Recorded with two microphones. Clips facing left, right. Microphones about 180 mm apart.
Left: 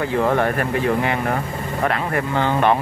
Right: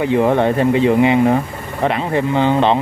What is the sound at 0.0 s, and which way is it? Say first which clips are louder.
Speech: right 5 dB; 20° right (ahead or behind).